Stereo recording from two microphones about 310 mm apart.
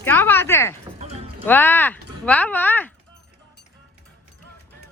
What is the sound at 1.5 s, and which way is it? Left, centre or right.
Speech, centre.